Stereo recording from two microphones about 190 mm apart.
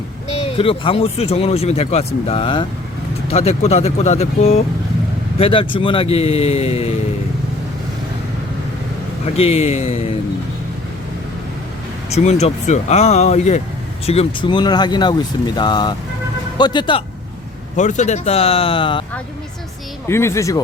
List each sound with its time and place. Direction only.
0.3 s speech: 30° left (ahead or behind)
9.3 s speech: 30° left (ahead or behind)
12.1 s speech: 35° left (ahead or behind)
17.7 s speech: 40° left (ahead or behind)
20.1 s speech: 15° left (ahead or behind)